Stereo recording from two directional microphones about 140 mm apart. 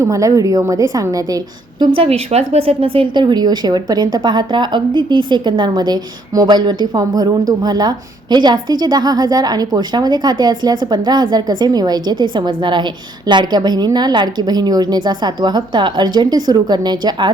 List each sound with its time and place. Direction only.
0.0 s a woman's voice: 25° right (ahead or behind)
2.0 s speech: 45° right (ahead or behind)